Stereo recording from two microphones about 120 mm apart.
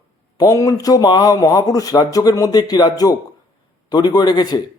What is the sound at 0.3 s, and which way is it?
A man's voice, 30° left (ahead or behind).